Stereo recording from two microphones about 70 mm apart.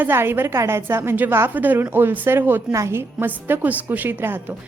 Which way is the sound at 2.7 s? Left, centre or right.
Right.